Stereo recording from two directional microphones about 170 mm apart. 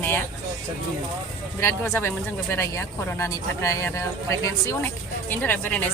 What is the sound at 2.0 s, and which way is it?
Speech, 15° left (ahead or behind).